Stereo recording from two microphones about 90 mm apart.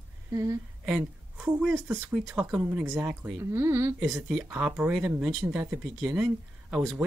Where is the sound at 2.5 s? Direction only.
30° right (ahead or behind).